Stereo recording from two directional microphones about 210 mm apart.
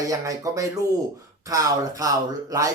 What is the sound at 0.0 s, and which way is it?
Speech, 15° right (ahead or behind).